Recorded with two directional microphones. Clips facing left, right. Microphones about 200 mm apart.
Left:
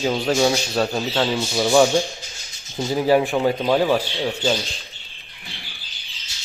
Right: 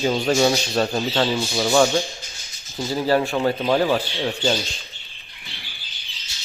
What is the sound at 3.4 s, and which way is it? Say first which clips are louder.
Speech: left 1 dB; 5° left (ahead or behind).